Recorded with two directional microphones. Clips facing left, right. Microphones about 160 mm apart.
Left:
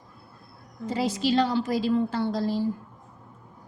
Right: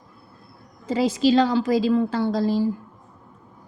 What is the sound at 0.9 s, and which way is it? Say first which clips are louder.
A woman's voice: right 6 dB; 90° right.